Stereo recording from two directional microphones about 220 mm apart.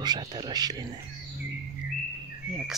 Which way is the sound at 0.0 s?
20° right (ahead or behind).